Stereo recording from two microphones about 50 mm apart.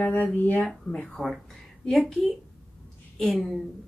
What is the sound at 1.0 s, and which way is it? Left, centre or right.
A woman's voice, centre.